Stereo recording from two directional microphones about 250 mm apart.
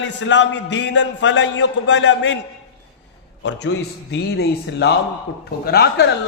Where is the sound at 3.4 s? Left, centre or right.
Left.